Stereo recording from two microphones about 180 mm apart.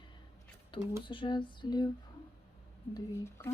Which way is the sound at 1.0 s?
25° left (ahead or behind).